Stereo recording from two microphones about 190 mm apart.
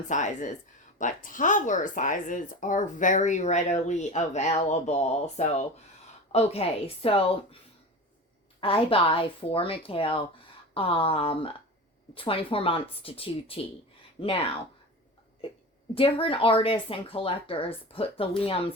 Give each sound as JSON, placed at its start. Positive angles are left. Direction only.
{"t": 0.1, "sound": "speech", "side_deg": 40}
{"t": 8.6, "sound": "speech", "side_deg": 30}
{"t": 16.0, "sound": "speech", "side_deg": 30}